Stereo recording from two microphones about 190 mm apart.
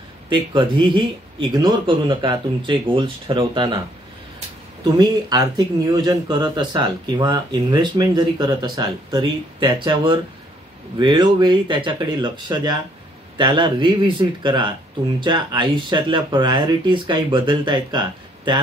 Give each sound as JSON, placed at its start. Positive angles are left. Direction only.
{"t": 0.3, "sound": "speech", "side_deg": -25}
{"t": 4.8, "sound": "speech", "side_deg": -20}